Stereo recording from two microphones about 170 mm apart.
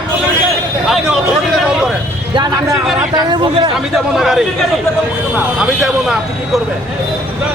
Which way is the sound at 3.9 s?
Centre (ahead or behind).